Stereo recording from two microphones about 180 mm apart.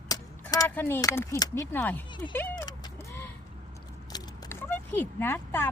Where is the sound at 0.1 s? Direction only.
20° left (ahead or behind).